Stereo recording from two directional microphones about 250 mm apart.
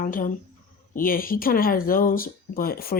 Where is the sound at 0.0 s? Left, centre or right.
Left.